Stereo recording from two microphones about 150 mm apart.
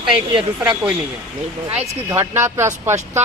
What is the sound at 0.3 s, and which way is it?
Speech, 30° right (ahead or behind).